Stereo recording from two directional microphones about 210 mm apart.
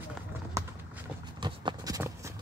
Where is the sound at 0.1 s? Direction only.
10° right (ahead or behind).